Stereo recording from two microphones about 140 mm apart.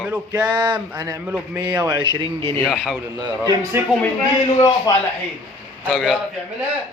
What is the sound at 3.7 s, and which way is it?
Speech, 15° right (ahead or behind).